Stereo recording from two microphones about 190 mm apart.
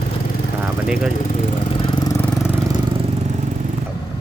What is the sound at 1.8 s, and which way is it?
Vehicle, 20° left (ahead or behind).